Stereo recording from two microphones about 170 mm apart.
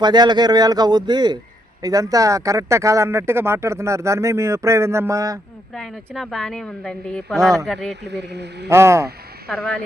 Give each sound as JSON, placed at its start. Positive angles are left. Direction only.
{"t": 0.0, "sound": "speech", "side_deg": -25}
{"t": 5.7, "sound": "a woman's voice", "side_deg": 0}
{"t": 8.0, "sound": "speech", "side_deg": -90}
{"t": 8.7, "sound": "speech", "side_deg": -15}
{"t": 9.5, "sound": "a woman's voice", "side_deg": 5}